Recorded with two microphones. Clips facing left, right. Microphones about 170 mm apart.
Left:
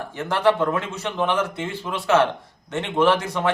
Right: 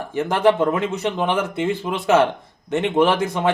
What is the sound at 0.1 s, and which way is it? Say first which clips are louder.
A man's voice: right 3 dB; 15° right (ahead or behind).